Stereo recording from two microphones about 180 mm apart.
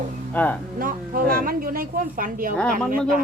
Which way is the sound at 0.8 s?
50° right (ahead or behind).